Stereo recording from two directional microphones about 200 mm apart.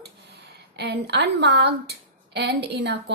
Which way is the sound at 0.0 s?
55° right (ahead or behind).